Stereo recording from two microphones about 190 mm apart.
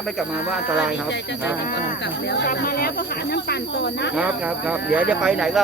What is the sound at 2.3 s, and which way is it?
Speech, 60° left (ahead or behind).